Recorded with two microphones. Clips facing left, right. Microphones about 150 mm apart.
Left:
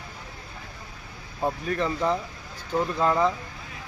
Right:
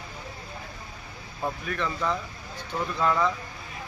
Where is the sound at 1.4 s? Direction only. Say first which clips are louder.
Left 4 dB; 30° left (ahead or behind).